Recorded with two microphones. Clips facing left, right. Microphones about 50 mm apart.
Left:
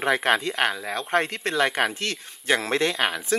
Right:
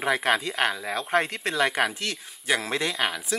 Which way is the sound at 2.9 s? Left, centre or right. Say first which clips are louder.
Left 2 dB; centre.